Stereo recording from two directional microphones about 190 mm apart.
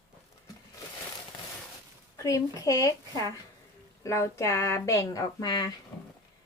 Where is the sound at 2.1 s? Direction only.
15° left (ahead or behind).